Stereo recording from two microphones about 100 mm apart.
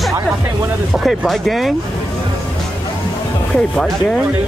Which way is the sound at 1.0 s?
Centre (ahead or behind).